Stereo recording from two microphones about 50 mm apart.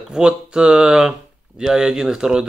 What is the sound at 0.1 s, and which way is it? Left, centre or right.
Speech, centre.